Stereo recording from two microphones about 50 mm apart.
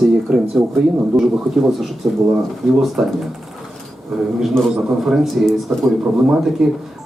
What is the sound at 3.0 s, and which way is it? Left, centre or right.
Speech, centre.